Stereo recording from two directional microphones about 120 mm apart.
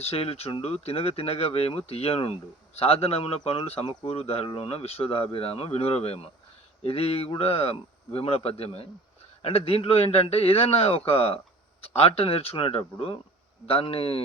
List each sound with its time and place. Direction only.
0.0 s speech: 55° left (ahead or behind)